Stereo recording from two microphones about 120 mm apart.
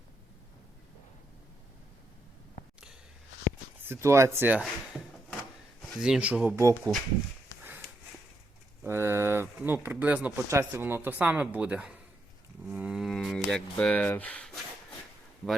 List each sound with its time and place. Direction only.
3.8 s speech: 20° right (ahead or behind)
6.0 s speech: 10° right (ahead or behind)
6.6 s speech: 25° right (ahead or behind)
8.8 s a sound: 20° right (ahead or behind)
9.6 s speech: 15° right (ahead or behind)
12.6 s cattle: 10° right (ahead or behind)